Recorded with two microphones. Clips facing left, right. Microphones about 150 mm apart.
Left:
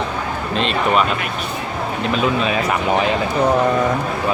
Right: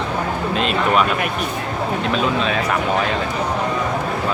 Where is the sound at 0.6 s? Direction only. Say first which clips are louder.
Left 1 dB; 5° right (ahead or behind).